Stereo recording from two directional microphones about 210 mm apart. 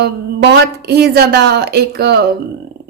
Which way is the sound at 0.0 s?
50° right (ahead or behind).